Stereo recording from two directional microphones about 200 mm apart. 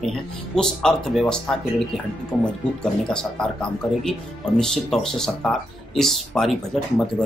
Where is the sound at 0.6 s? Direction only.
5° left (ahead or behind).